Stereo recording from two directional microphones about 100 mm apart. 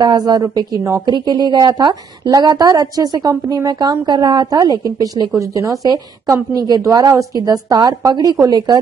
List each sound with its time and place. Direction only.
0.0 s a woman's voice: 40° right (ahead or behind)
1.1 s a woman's voice: 45° right (ahead or behind)